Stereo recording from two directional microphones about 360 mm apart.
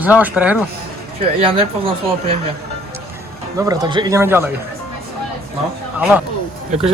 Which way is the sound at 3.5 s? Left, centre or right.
Centre.